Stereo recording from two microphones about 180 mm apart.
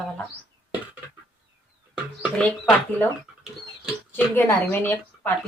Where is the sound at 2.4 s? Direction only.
10° left (ahead or behind).